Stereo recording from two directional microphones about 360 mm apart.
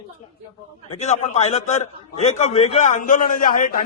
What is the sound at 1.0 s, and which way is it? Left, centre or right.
A man's voice, centre.